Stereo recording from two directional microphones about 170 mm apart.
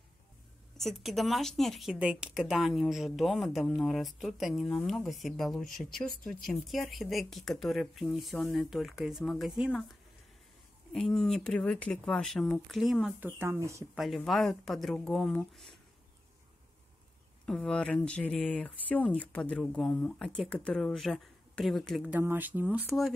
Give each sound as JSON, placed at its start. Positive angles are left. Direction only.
{"t": 0.7, "sound": "speech", "side_deg": 0}
{"t": 10.9, "sound": "speech", "side_deg": 5}
{"t": 13.4, "sound": "speech", "side_deg": -15}
{"t": 13.9, "sound": "speech", "side_deg": 0}
{"t": 17.5, "sound": "speech", "side_deg": 5}
{"t": 22.8, "sound": "speech", "side_deg": 0}